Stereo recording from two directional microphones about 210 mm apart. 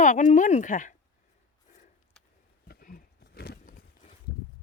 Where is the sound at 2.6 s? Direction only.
45° left (ahead or behind).